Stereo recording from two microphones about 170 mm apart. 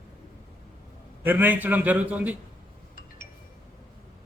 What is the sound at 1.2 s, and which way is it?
A man's voice, 10° right (ahead or behind).